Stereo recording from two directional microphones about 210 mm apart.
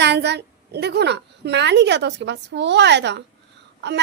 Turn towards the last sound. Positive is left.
turn(degrees=-55)  # may be behind; listen again after turning